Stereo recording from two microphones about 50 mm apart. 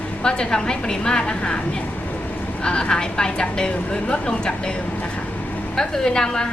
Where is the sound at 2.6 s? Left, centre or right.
Centre.